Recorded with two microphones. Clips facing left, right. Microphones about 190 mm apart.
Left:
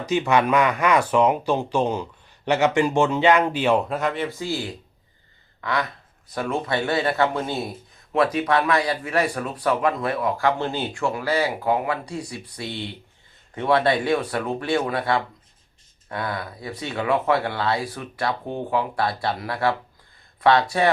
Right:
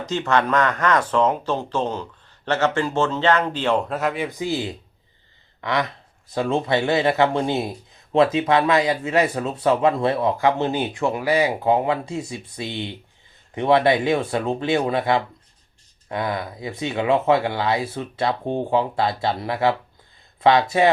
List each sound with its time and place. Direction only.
0.0 s speech: 10° left (ahead or behind); by 20.9 s 20° right (ahead or behind)